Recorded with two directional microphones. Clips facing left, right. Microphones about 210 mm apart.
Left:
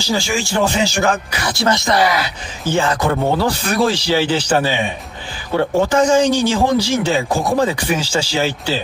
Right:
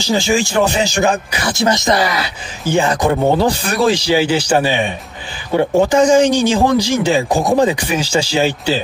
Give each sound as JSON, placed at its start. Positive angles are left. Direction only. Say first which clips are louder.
{"t": 0.0, "sound": "speech", "louder": "right 4 dB", "side_deg": -20}